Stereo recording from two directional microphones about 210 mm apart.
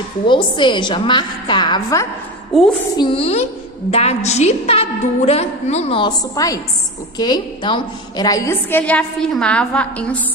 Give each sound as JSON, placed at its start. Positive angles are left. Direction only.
{"t": 0.3, "sound": "a woman's voice", "side_deg": 20}